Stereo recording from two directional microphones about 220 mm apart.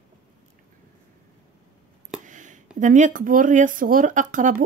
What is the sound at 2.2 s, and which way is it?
Speech, 35° right (ahead or behind).